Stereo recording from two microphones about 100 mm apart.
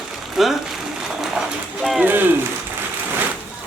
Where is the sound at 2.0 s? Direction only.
20° right (ahead or behind).